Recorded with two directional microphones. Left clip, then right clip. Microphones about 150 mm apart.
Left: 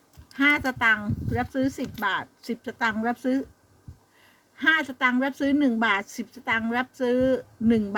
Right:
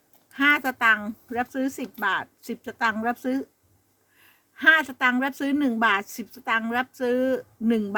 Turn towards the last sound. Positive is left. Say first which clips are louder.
# left 1 dB
turn(degrees=-25)  # may be behind; listen again after turning